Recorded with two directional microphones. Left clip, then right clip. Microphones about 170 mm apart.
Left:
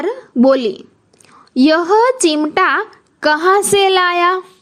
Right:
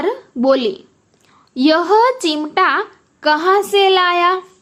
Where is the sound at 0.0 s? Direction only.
40° left (ahead or behind).